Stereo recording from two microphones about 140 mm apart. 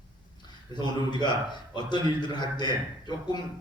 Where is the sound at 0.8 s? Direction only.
30° left (ahead or behind).